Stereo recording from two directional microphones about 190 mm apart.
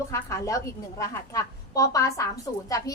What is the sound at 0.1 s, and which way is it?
A woman's voice, 15° left (ahead or behind).